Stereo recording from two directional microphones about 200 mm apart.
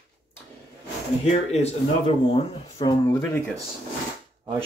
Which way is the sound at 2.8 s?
20° left (ahead or behind).